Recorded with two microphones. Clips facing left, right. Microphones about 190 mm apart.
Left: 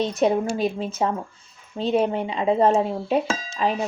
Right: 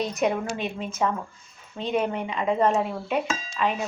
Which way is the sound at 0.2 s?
35° left (ahead or behind).